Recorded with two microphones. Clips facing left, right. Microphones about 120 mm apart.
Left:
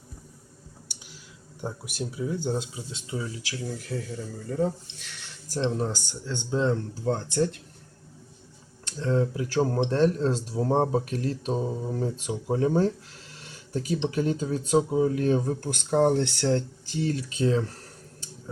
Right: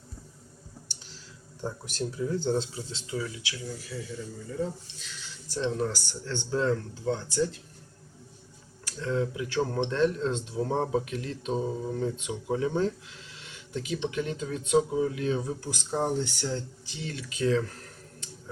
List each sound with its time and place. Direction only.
1.6 s speech: 10° left (ahead or behind)
3.1 s speech: 30° left (ahead or behind)
3.8 s speech: 60° left (ahead or behind)
5.7 s speech: 25° left (ahead or behind)
6.0 s speech: 15° left (ahead or behind)
7.1 s speech: 55° left (ahead or behind)
8.8 s speech: 30° left (ahead or behind); by 16.6 s 65° left (ahead or behind)
16.8 s speech: 45° left (ahead or behind)